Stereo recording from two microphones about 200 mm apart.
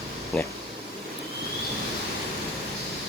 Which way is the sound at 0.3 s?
5° left (ahead or behind).